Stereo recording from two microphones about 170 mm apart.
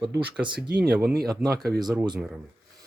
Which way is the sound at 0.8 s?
5° right (ahead or behind).